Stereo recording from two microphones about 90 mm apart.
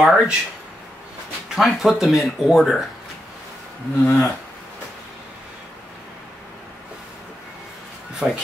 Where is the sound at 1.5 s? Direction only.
5° right (ahead or behind).